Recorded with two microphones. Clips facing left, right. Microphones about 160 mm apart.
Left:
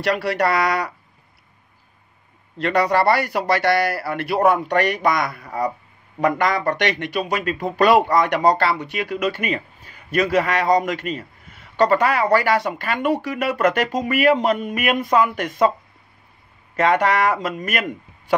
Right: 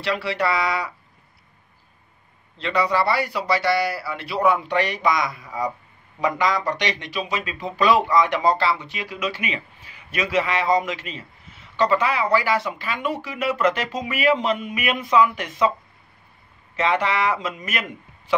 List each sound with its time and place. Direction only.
0.0 s speech: 50° left (ahead or behind)
0.6 s speech: 70° left (ahead or behind)
2.5 s speech: 50° left (ahead or behind)
16.7 s speech: 50° left (ahead or behind)